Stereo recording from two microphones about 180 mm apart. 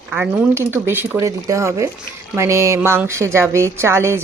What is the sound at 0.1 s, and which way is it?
Speech, 10° right (ahead or behind).